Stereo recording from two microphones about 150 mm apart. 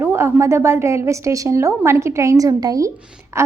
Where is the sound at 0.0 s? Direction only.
15° right (ahead or behind).